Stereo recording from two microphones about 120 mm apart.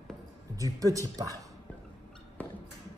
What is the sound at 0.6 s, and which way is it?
Speech, 30° right (ahead or behind).